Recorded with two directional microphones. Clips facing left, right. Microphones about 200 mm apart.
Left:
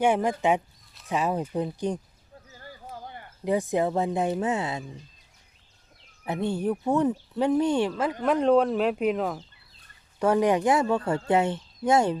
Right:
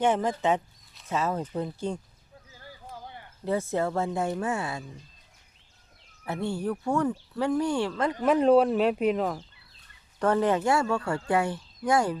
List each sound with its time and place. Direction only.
0.0 s speech: 10° left (ahead or behind)
2.5 s a sound: 50° left (ahead or behind)
3.4 s speech: 15° left (ahead or behind)
6.2 s speech: 20° left (ahead or behind)
8.2 s speech: 5° right (ahead or behind)
10.2 s speech: 10° left (ahead or behind)